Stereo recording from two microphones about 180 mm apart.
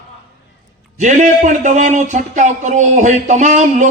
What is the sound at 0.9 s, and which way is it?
Speech, 45° right (ahead or behind).